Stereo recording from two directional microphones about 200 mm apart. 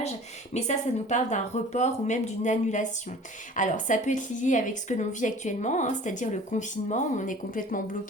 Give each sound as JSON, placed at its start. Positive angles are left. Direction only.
{"t": 0.5, "sound": "a woman's voice", "side_deg": 35}